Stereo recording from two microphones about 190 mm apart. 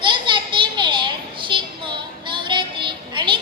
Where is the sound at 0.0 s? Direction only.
25° right (ahead or behind).